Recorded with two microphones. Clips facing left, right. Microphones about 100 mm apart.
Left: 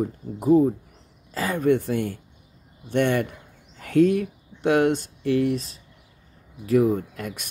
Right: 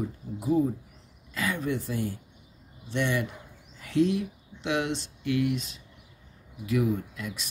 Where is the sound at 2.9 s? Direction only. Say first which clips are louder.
Left 7 dB; 55° left (ahead or behind).